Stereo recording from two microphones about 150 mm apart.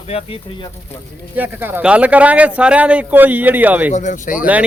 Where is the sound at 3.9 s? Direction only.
55° left (ahead or behind).